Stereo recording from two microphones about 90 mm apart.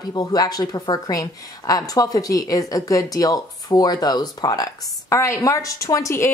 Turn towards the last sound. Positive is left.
turn(degrees=35)  # may be behind; listen again after turning